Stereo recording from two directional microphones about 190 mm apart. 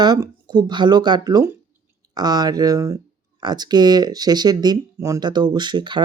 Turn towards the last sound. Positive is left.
turn(degrees=-25)  # may be behind; listen again after turning